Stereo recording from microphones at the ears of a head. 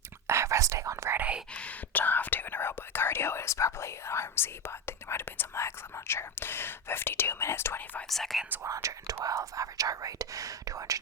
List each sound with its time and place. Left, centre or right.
0.3 s whispering: right
1.9 s whispering: left
4.9 s speech: left
8.4 s speech: right